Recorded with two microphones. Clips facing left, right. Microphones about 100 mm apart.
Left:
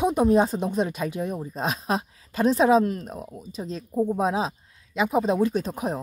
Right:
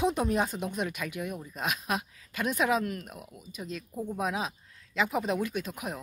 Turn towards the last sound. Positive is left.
turn(degrees=30)  # may be behind; listen again after turning